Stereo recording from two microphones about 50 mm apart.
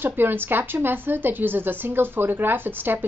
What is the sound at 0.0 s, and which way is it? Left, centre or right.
A woman's voice, right.